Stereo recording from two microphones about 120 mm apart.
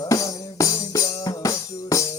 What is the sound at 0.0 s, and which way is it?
Music, 25° left (ahead or behind).